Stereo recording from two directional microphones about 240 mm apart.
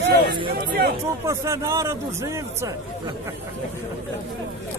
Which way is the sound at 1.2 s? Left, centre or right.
Centre.